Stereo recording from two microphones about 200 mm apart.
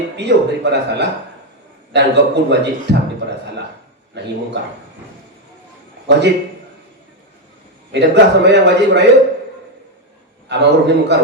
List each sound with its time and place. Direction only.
0.2 s a man's voice: 60° right (ahead or behind)
6.1 s a man's voice: 60° right (ahead or behind)
7.9 s a man's voice: 60° right (ahead or behind)
10.5 s a man's voice: 60° right (ahead or behind)